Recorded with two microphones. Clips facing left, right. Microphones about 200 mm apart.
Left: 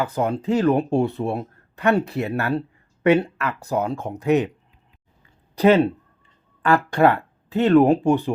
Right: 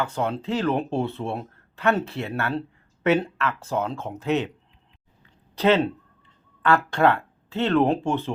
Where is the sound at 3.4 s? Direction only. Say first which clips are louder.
Left 2 dB; 15° left (ahead or behind).